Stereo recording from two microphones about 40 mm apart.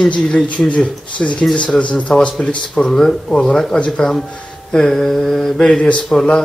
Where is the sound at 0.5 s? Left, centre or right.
Left.